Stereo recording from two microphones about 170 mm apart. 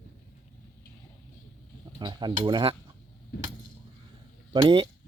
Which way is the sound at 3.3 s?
60° left (ahead or behind).